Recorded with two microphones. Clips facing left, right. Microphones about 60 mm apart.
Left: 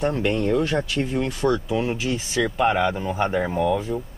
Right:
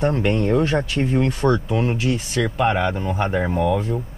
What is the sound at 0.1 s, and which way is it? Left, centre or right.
Speech, centre.